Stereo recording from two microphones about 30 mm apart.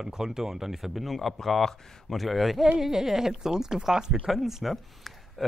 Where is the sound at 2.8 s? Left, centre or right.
Centre.